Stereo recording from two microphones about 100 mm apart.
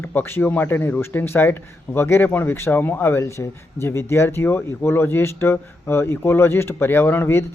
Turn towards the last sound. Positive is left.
turn(degrees=25)  # may be behind; listen again after turning